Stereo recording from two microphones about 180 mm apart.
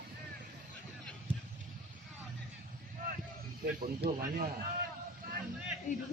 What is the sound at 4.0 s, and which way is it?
Speech, 40° right (ahead or behind).